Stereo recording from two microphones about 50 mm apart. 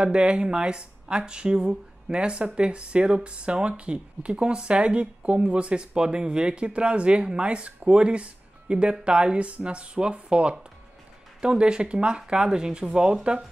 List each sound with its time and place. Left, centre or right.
0.0 s speech: right